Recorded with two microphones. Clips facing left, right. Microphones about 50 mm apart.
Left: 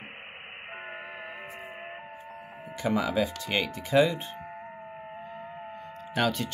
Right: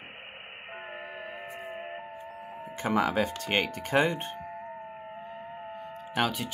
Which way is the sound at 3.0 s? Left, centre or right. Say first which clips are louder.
Right 1 dB; right.